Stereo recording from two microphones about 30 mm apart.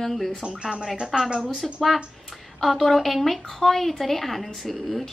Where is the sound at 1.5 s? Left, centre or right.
Centre.